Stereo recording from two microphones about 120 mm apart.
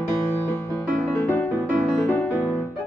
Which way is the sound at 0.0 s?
20° left (ahead or behind).